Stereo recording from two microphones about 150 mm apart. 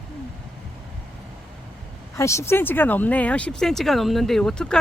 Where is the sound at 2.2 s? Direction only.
20° left (ahead or behind).